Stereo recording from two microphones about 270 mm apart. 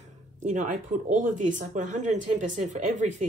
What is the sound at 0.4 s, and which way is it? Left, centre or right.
Speech, right.